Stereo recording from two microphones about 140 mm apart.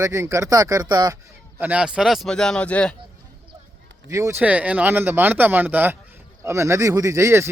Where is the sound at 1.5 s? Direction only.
10° right (ahead or behind); by 2.9 s 10° left (ahead or behind).